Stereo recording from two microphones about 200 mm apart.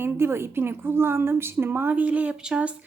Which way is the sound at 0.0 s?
10° right (ahead or behind).